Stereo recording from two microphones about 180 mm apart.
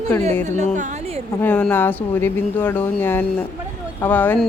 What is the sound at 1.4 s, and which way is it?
Speech, 10° left (ahead or behind).